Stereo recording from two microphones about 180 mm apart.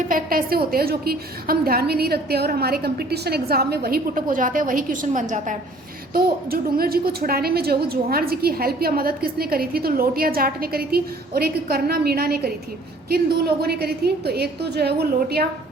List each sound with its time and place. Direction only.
0.1 s a woman's voice: 55° right (ahead or behind)